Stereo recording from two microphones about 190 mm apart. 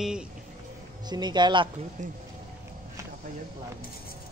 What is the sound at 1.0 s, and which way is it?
Speech, 20° right (ahead or behind).